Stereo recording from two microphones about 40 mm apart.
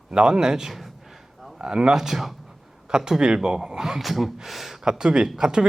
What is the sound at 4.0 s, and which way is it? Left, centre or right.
Speech, centre.